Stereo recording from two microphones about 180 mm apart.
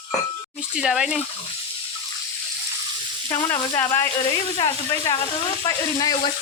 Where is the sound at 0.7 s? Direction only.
5° right (ahead or behind).